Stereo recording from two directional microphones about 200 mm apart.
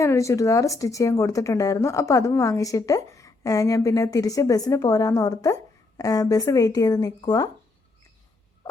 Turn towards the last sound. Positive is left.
turn(degrees=20)  # may be behind; listen again after turning